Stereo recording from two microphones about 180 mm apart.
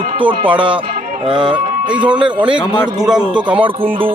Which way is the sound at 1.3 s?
25° right (ahead or behind).